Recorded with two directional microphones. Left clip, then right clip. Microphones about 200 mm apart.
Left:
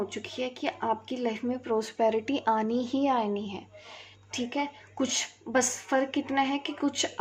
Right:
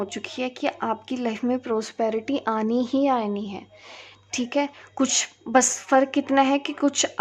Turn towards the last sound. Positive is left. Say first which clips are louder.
# right 6 dB
turn(degrees=-35)  # may be behind; listen again after turning